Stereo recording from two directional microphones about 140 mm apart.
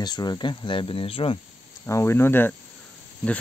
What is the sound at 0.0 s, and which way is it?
Speech, 30° left (ahead or behind).